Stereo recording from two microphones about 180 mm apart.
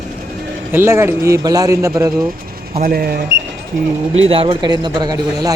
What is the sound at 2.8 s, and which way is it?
Speech, 55° right (ahead or behind).